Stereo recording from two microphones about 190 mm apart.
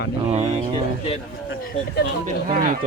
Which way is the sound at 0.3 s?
35° right (ahead or behind).